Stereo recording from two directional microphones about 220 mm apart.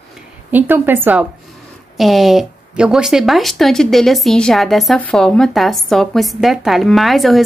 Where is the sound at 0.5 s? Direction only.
10° right (ahead or behind).